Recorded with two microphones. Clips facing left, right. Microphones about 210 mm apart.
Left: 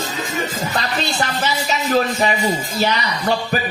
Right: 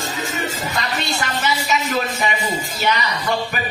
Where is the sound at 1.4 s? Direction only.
35° left (ahead or behind).